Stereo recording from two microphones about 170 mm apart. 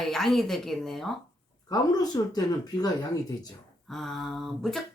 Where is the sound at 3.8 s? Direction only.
Centre (ahead or behind).